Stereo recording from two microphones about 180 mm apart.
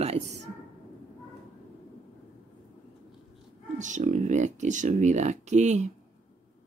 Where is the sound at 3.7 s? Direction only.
45° right (ahead or behind).